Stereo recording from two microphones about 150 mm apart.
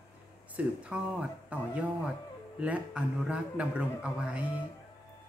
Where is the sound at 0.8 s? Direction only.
5° right (ahead or behind).